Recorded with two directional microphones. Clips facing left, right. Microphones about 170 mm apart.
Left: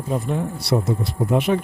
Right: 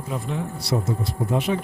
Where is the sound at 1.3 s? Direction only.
60° left (ahead or behind).